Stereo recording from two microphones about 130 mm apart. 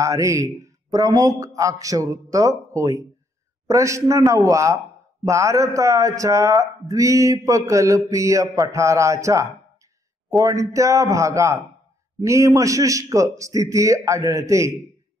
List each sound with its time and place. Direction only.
0.0 s a man's voice: 25° right (ahead or behind)